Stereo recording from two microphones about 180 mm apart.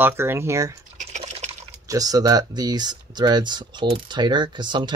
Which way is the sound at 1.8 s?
20° right (ahead or behind).